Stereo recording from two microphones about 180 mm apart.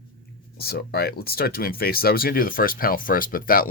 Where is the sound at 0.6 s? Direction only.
60° left (ahead or behind).